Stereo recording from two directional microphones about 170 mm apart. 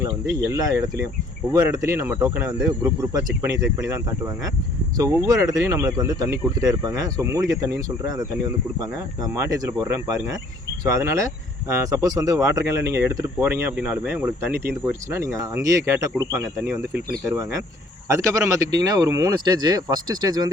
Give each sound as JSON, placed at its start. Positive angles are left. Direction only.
{"t": 0.0, "sound": "speech", "side_deg": -20}